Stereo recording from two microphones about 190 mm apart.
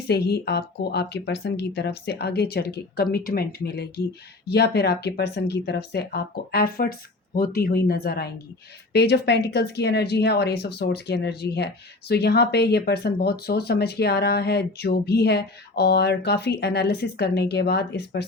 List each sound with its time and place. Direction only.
0.1 s speech: 60° left (ahead or behind)